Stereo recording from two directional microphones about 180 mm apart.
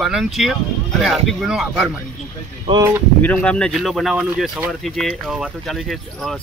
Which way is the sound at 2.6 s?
25° right (ahead or behind).